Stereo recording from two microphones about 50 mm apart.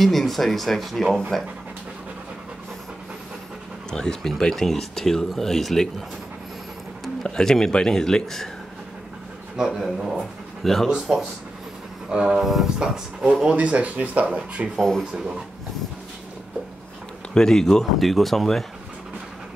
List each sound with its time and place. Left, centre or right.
0.0 s speech: centre
3.9 s speech: centre
7.2 s speech: centre
9.6 s speech: centre
10.1 s speech: centre
10.9 s speech: centre
13.6 s speech: right
14.8 s speech: centre
17.3 s speech: centre